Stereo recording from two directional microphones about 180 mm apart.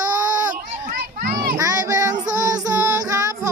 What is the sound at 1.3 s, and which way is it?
Child singing, 20° right (ahead or behind).